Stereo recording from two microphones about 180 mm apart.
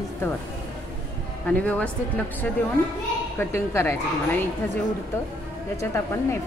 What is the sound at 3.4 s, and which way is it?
Speech, 15° left (ahead or behind).